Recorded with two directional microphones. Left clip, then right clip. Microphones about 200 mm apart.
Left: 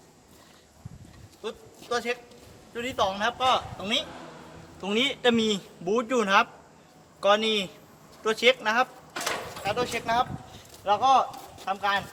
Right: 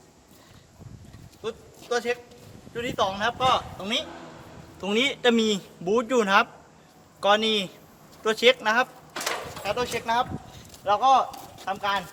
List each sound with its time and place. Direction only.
1.4 s a man's voice: 5° right (ahead or behind)
4.8 s a man's voice: 25° right (ahead or behind)
10.5 s a sound: centre (ahead or behind)
11.5 s speech: 15° right (ahead or behind)